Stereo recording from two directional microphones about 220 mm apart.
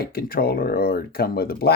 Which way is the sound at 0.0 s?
45° left (ahead or behind).